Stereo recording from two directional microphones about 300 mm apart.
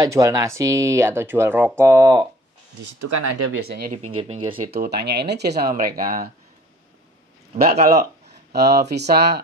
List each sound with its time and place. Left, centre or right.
0.0 s speech: centre
2.8 s speech: right
3.6 s speech: right
7.7 s speech: right